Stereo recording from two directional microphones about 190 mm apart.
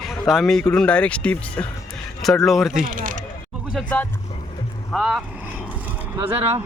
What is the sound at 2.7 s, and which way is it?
Speech, 45° right (ahead or behind).